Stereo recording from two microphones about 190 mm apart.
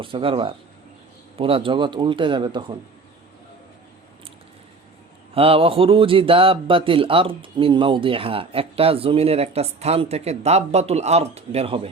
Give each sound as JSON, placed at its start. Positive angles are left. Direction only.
{"t": 0.0, "sound": "a man's voice", "side_deg": -25}
{"t": 5.3, "sound": "a man's voice", "side_deg": -30}